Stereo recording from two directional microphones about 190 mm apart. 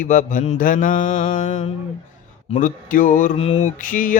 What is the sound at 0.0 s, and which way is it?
Mantra, 40° left (ahead or behind).